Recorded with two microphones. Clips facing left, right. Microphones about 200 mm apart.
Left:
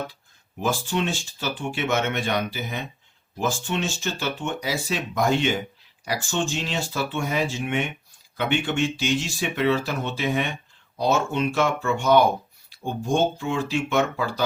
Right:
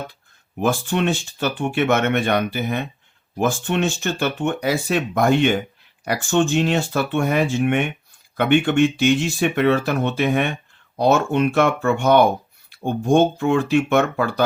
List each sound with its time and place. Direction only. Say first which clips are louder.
0.6 s speech: right 5 dB; 60° right (ahead or behind)